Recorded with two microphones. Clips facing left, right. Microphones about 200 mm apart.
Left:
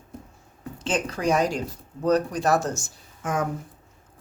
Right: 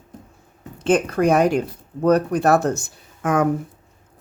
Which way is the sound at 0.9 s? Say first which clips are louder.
Right 7 dB; 55° right (ahead or behind).